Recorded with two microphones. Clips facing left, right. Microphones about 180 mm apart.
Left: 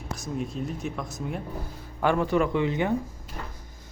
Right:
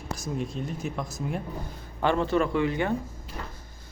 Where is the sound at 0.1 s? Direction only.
Centre (ahead or behind); by 2.9 s 20° left (ahead or behind).